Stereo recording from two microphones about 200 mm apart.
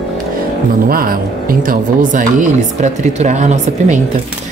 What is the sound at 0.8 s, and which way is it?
Speech, 45° right (ahead or behind).